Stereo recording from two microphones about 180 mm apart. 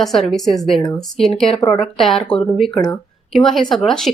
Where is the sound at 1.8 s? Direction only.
Centre (ahead or behind).